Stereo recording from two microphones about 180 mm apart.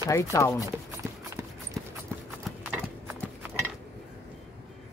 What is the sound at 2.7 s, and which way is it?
Horse, 10° right (ahead or behind).